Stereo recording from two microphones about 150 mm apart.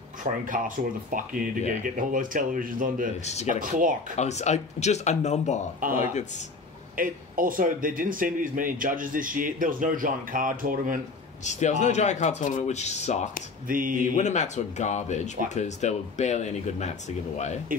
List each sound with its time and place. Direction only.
0.2 s a man's voice: 65° right (ahead or behind)
4.2 s speech: 50° left (ahead or behind)
7.0 s a man's voice: 65° right (ahead or behind)
11.4 s speech: 50° left (ahead or behind)
13.7 s a man's voice: 65° right (ahead or behind)
14.1 s speech: 50° left (ahead or behind)